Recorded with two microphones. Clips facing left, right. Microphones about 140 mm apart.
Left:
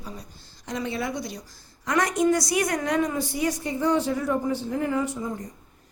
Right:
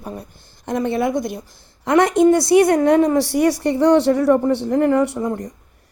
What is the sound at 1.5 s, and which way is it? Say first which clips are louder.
A woman's voice: right 10 dB; 25° right (ahead or behind).